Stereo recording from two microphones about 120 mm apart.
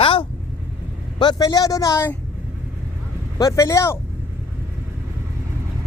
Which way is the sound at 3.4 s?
30° left (ahead or behind).